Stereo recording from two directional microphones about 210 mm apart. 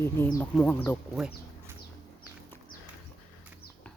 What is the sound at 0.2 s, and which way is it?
Speech, 10° left (ahead or behind).